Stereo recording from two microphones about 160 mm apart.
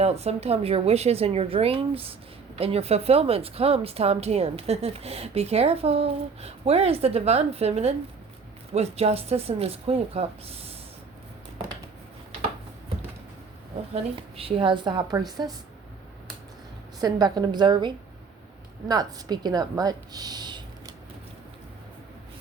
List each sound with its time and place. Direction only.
0.0 s a woman's voice: 40° right (ahead or behind)
13.9 s a woman's voice: 35° right (ahead or behind)
17.0 s a woman's voice: 25° right (ahead or behind)